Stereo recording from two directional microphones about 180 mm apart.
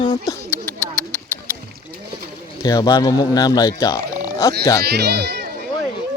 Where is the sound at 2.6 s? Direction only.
20° left (ahead or behind).